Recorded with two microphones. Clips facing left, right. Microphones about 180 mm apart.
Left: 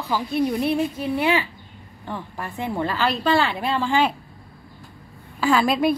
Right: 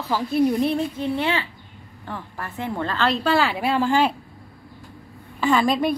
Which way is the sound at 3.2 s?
5° right (ahead or behind).